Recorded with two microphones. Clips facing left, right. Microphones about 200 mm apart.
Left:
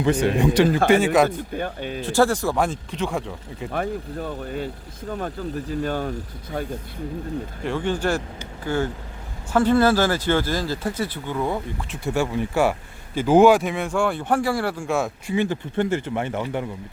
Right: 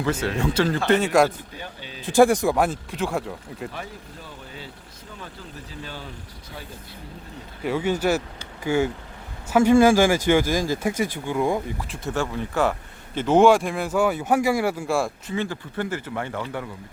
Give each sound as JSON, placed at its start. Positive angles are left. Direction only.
{"t": 0.0, "sound": "speech", "side_deg": 15}
{"t": 1.5, "sound": "speech", "side_deg": 55}
{"t": 2.0, "sound": "speech", "side_deg": -15}
{"t": 2.6, "sound": "speech", "side_deg": -5}
{"t": 3.7, "sound": "speech", "side_deg": 55}
{"t": 7.6, "sound": "speech", "side_deg": -5}
{"t": 12.1, "sound": "speech", "side_deg": 15}
{"t": 15.4, "sound": "speech", "side_deg": 20}